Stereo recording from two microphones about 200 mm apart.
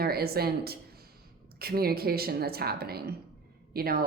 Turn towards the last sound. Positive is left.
turn(degrees=-50)  # may be behind; listen again after turning